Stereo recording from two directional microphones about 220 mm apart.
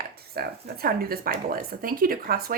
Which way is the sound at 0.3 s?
45° right (ahead or behind).